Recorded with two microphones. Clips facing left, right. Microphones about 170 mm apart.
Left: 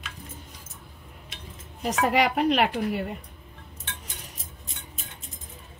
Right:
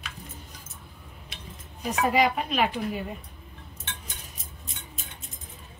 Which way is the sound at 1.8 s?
75° left (ahead or behind).